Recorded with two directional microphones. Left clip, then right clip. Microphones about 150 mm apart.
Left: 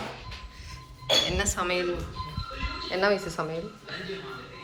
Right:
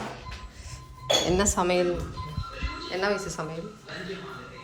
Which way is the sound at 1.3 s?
30° right (ahead or behind).